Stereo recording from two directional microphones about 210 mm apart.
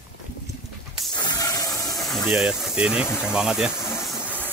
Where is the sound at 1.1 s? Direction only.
20° left (ahead or behind).